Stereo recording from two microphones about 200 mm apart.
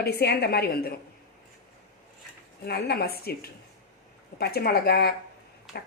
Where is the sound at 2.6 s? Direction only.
55° left (ahead or behind).